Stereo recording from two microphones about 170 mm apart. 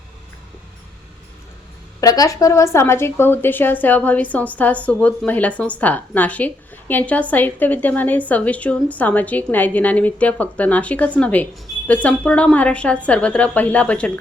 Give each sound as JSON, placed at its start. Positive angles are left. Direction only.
{"t": 2.0, "sound": "a woman's voice", "side_deg": 20}